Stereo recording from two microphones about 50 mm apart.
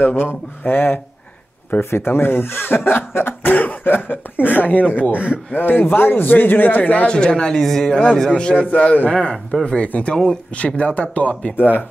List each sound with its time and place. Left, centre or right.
0.0 s speech: left
1.8 s speech: left
5.1 s speech: right
5.5 s speech: left
7.2 s speech: centre
7.6 s speech: centre
7.9 s a man's voice: left